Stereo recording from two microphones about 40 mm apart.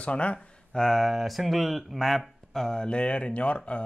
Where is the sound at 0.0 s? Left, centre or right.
Left.